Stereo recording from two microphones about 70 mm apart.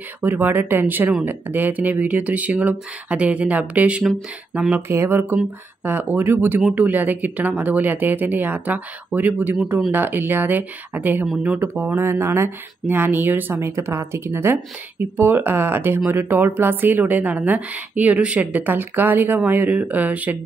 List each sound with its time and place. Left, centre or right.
0.2 s a woman's voice: right
4.8 s a woman's voice: right
12.0 s a woman's voice: right